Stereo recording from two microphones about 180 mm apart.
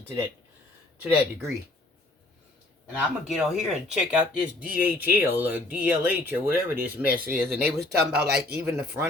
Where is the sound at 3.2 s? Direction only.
5° right (ahead or behind).